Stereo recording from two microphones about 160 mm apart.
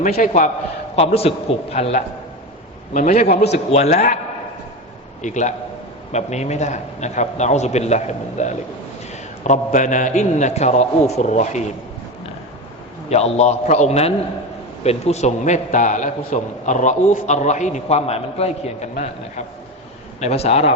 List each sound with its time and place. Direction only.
0.0 s a man's voice: 55° left (ahead or behind)
0.9 s a man's voice: 40° left (ahead or behind)
2.9 s a man's voice: 60° left (ahead or behind)
3.5 s a man's voice: 40° left (ahead or behind)
5.2 s a man's voice: 50° left (ahead or behind)
13.1 s a man's voice: 40° left (ahead or behind)